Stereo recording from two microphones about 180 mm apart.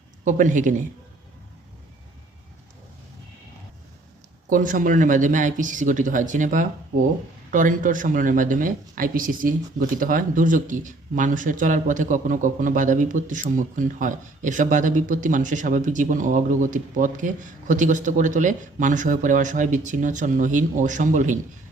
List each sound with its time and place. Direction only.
0.3 s speech: 45° right (ahead or behind)
4.4 s speech: 45° right (ahead or behind)